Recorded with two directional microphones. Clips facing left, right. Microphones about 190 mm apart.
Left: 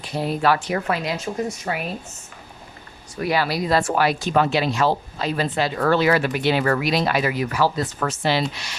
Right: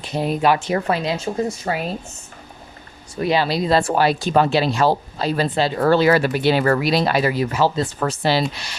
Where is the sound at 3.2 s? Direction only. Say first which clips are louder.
Right 3 dB; 25° right (ahead or behind).